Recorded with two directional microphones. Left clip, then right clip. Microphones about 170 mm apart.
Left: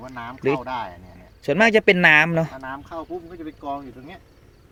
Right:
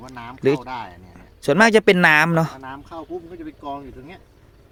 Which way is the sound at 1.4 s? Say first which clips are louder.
Right 2 dB; 35° right (ahead or behind).